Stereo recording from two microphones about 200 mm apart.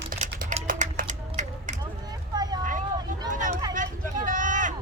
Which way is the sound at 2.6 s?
40° right (ahead or behind).